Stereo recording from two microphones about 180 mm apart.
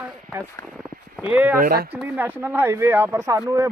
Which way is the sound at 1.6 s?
55° right (ahead or behind).